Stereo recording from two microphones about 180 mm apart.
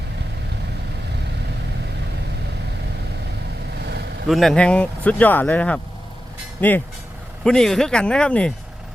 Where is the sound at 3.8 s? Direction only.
65° right (ahead or behind).